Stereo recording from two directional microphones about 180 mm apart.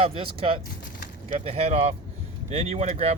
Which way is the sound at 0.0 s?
30° right (ahead or behind).